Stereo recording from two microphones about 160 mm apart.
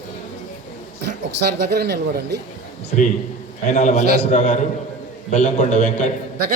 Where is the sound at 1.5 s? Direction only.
90° right.